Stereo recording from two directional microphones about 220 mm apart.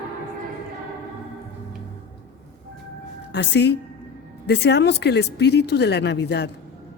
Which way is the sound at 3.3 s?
50° left (ahead or behind).